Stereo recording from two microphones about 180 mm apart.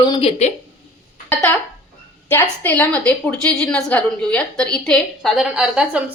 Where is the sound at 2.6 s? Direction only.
10° left (ahead or behind).